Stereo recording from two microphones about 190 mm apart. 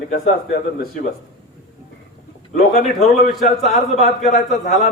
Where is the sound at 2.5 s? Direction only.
35° left (ahead or behind).